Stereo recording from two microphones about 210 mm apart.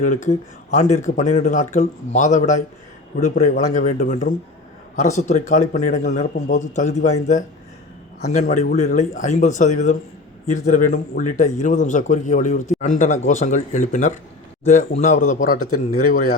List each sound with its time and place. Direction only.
0.0 s speech: 35° left (ahead or behind)